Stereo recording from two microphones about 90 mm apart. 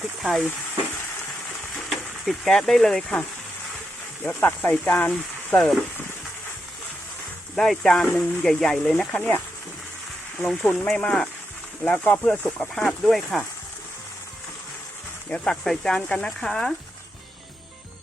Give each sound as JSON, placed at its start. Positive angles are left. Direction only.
{"t": 0.2, "sound": "speech", "side_deg": 0}
{"t": 1.9, "sound": "speech", "side_deg": 0}
{"t": 4.4, "sound": "speech", "side_deg": 20}
{"t": 7.5, "sound": "speech", "side_deg": 5}
{"t": 10.4, "sound": "speech", "side_deg": 10}
{"t": 11.9, "sound": "speech", "side_deg": 20}
{"t": 12.5, "sound": "speech", "side_deg": 5}
{"t": 15.3, "sound": "speech", "side_deg": 5}